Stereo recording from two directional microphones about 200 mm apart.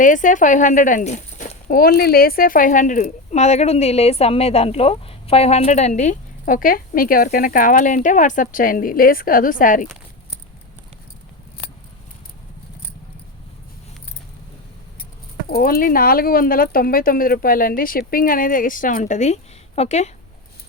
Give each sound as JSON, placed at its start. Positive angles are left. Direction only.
{"t": 0.0, "sound": "speech", "side_deg": 40}
{"t": 15.4, "sound": "speech", "side_deg": 50}